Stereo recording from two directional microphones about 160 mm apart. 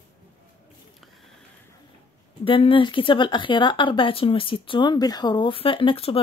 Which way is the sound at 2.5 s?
35° left (ahead or behind).